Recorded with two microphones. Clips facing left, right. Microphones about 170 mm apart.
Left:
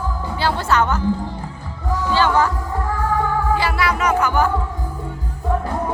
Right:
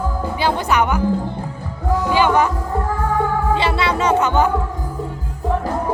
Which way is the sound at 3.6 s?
25° right (ahead or behind).